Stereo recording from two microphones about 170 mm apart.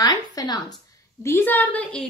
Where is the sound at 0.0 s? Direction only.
20° left (ahead or behind).